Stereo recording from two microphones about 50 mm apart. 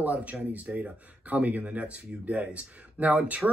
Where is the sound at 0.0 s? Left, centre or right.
Right.